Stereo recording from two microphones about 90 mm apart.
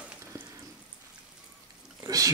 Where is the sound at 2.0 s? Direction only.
40° right (ahead or behind).